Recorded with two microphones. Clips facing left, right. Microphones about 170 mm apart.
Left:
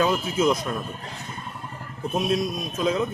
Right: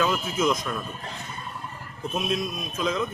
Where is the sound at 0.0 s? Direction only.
30° left (ahead or behind).